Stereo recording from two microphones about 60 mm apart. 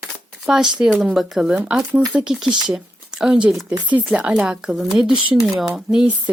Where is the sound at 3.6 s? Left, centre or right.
Right.